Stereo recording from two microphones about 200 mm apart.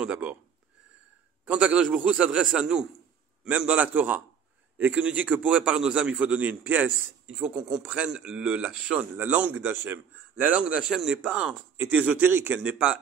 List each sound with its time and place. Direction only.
0.0 s a man's voice: 5° right (ahead or behind)
1.4 s a man's voice: 5° right (ahead or behind)